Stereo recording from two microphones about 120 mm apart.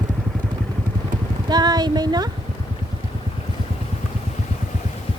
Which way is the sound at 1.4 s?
35° right (ahead or behind).